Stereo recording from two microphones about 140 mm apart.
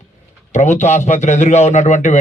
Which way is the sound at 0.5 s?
55° left (ahead or behind).